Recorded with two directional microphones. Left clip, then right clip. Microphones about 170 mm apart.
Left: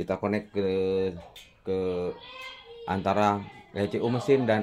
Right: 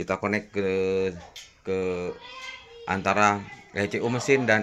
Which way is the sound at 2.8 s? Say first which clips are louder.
Right 3 dB; 15° left (ahead or behind).